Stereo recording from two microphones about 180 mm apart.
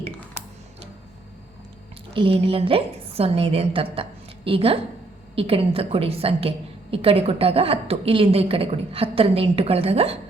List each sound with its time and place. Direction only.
2.1 s a woman's voice: 30° right (ahead or behind)